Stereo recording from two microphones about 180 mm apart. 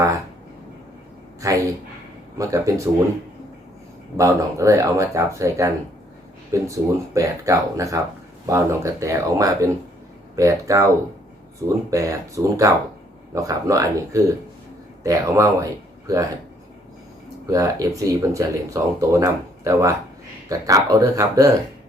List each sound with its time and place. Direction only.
1.4 s speech: 20° right (ahead or behind)
4.2 s speech: 15° right (ahead or behind)
17.5 s speech: 20° right (ahead or behind)